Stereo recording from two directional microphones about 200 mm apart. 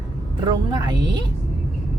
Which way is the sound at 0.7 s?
20° right (ahead or behind).